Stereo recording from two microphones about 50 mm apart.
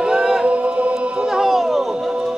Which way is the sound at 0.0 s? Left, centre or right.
Centre.